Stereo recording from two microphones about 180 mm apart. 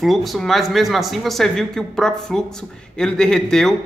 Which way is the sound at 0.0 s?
Centre (ahead or behind).